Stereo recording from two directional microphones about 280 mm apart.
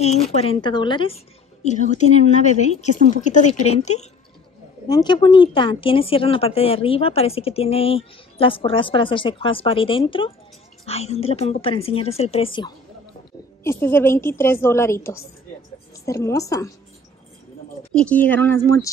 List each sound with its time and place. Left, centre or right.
0.0 s a woman's voice: left
17.9 s a woman's voice: centre